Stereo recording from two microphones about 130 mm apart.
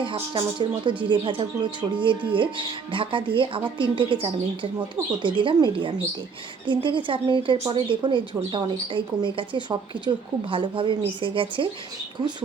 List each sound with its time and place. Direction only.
0.0 s speech: 40° right (ahead or behind)
10.1 s a woman's voice: 25° right (ahead or behind)
10.5 s speech: 40° right (ahead or behind)